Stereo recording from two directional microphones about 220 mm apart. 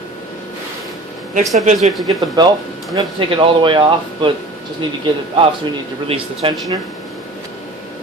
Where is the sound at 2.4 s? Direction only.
20° right (ahead or behind).